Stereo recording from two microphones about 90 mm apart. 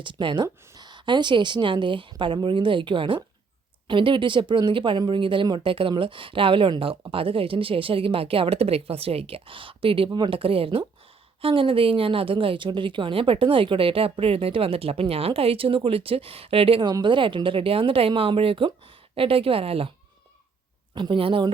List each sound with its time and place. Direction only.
0.0 s a woman's voice: 65° right (ahead or behind)
5.5 s speech: 85° right
10.1 s speech: 65° right (ahead or behind); by 16.9 s 90° right
17.0 s speech: 65° right (ahead or behind); by 19.9 s 90° right
20.9 s speech: 65° right (ahead or behind)